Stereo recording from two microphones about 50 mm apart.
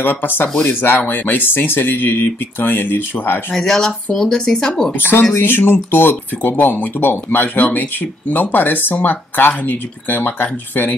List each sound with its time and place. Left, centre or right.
0.0 s speech: left
3.5 s speech: centre
5.4 s speech: left